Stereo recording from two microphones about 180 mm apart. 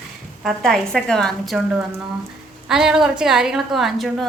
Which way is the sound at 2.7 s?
5° right (ahead or behind).